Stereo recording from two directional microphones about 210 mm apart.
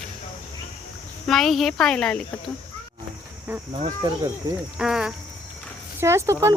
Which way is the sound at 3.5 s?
10° right (ahead or behind).